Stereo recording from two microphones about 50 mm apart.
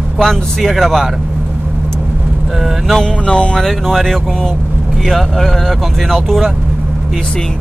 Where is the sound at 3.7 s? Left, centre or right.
Centre.